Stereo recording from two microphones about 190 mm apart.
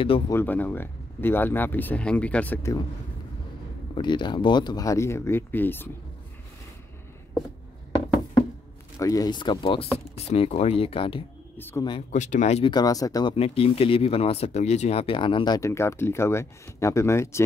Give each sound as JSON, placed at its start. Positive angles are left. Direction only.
{"t": 0.3, "sound": "speech", "side_deg": 10}
{"t": 3.9, "sound": "speech", "side_deg": 25}
{"t": 8.9, "sound": "speech", "side_deg": 20}
{"t": 11.5, "sound": "speech", "side_deg": 10}
{"t": 12.1, "sound": "speech", "side_deg": 40}
{"t": 12.7, "sound": "speech", "side_deg": 20}
{"t": 13.3, "sound": "speech", "side_deg": 30}